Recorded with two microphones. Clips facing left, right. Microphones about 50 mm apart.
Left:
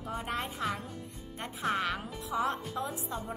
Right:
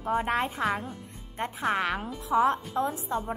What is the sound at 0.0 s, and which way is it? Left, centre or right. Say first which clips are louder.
Speech: right 9 dB; right.